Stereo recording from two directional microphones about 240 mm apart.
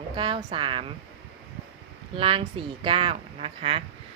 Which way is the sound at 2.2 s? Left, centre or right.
Right.